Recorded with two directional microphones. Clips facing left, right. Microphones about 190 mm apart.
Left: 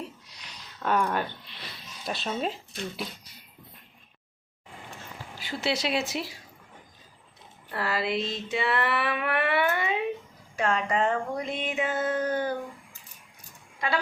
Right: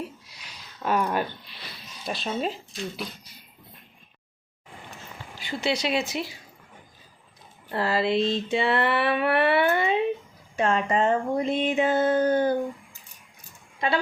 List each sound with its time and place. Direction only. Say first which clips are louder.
0.8 s speech: right 1 dB; 10° right (ahead or behind)
2.0 s speech: right 2 dB; centre (ahead or behind)
5.4 s speech: right 2 dB; centre (ahead or behind)
7.7 s a sound: right 5 dB; 25° right (ahead or behind)
10.6 s speech: right 3 dB; 25° right (ahead or behind)
13.7 s speech: right 3 dB; 25° right (ahead or behind)